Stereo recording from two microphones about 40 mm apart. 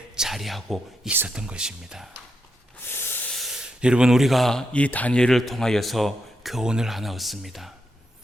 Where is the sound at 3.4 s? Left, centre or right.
Centre.